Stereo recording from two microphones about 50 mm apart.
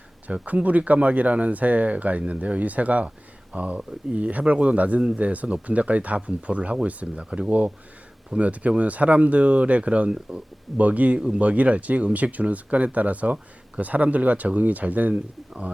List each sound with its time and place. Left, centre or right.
0.3 s speech: right